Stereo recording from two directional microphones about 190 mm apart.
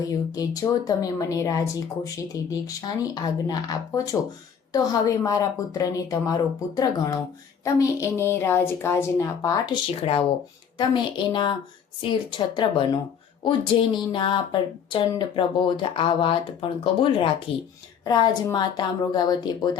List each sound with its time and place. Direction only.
0.0 s a woman's voice: 20° left (ahead or behind)
10.8 s speech: 25° left (ahead or behind)